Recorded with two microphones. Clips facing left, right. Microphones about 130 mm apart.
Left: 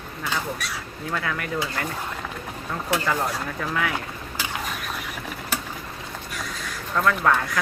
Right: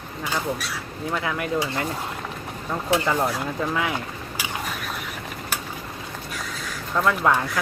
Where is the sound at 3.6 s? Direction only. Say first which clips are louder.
Right 1 dB; 20° right (ahead or behind).